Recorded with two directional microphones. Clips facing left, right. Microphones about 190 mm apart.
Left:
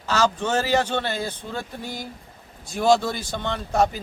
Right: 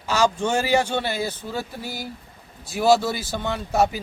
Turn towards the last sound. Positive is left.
turn(degrees=-5)  # may be behind; listen again after turning